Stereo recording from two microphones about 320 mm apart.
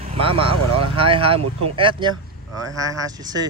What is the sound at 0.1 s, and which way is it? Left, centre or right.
Speech, centre.